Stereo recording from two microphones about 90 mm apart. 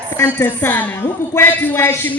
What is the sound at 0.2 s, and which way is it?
A man's voice, 25° left (ahead or behind).